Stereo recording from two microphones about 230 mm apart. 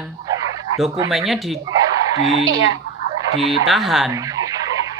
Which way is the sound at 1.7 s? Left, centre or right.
Centre.